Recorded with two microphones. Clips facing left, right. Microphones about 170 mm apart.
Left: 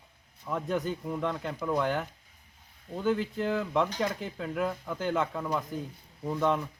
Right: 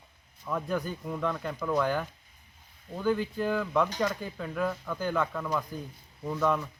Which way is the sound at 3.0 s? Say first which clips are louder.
Right 1 dB; 25° left (ahead or behind).